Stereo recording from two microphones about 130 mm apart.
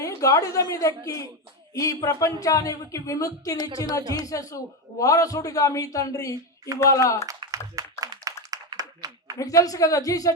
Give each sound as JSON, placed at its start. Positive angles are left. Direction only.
{"t": 0.0, "sound": "a man's voice", "side_deg": 25}
{"t": 7.3, "sound": "a sound", "side_deg": -25}
{"t": 9.4, "sound": "a man's voice", "side_deg": 25}